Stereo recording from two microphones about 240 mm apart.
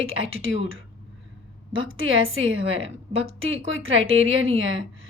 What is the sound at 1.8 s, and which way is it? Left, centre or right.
Speech, right.